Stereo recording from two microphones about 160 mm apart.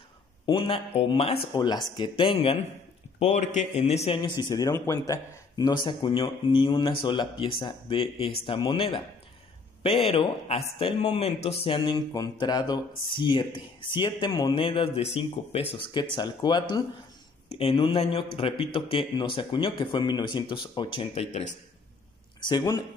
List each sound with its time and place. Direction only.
0.5 s speech: 35° left (ahead or behind)
3.2 s speech: 45° left (ahead or behind)
10.0 s speech: 35° left (ahead or behind)
15.8 s speech: 30° left (ahead or behind)
17.5 s speech: 40° left (ahead or behind)
22.4 s speech: 25° left (ahead or behind)